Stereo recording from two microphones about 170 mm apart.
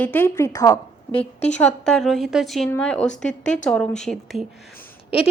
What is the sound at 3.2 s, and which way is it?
A woman's voice, 5° left (ahead or behind).